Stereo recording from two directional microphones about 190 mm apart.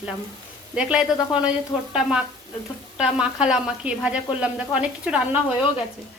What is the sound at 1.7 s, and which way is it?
Frying, 30° left (ahead or behind).